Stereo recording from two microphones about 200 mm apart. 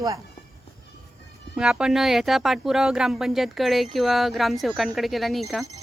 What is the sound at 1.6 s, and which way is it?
A woman's voice, 5° right (ahead or behind).